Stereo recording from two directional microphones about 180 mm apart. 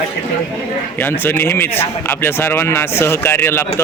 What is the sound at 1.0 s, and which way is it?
Speech, 10° left (ahead or behind).